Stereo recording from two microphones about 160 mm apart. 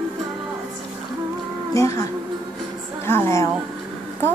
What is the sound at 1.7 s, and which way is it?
Speech, 20° left (ahead or behind).